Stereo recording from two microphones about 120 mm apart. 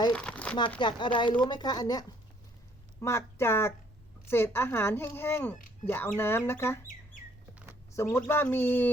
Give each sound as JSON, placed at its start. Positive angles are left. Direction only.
{"t": 0.1, "sound": "crumpling", "side_deg": 10}
{"t": 0.8, "sound": "speech", "side_deg": 40}
{"t": 3.0, "sound": "speech", "side_deg": 25}
{"t": 7.9, "sound": "speech", "side_deg": 20}